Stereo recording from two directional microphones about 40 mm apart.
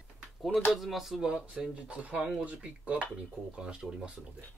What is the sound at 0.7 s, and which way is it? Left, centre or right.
Speech, centre.